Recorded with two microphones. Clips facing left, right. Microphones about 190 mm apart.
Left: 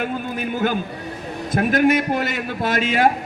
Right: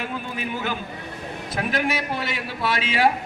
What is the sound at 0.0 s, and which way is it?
A man's voice, 45° left (ahead or behind).